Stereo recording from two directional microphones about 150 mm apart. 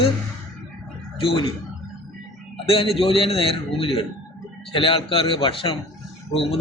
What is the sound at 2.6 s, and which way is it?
A man's voice, 40° left (ahead or behind).